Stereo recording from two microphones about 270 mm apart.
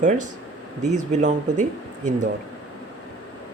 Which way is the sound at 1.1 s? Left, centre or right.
Right.